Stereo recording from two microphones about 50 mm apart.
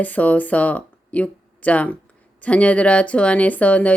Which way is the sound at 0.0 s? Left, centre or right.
Left.